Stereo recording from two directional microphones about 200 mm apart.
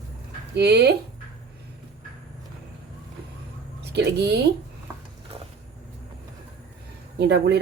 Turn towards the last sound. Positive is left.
turn(degrees=-55)  # may be behind; listen again after turning